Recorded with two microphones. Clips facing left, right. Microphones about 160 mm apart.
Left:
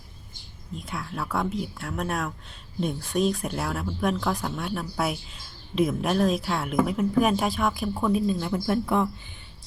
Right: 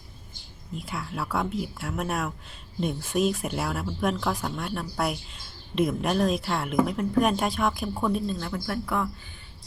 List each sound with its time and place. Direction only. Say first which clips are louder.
0.8 s speech: even; centre (ahead or behind)
8.4 s speech: left 5 dB; 20° left (ahead or behind)